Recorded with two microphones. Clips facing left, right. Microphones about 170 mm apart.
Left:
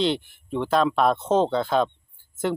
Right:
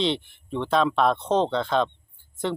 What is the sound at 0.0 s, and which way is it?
Speech, centre (ahead or behind).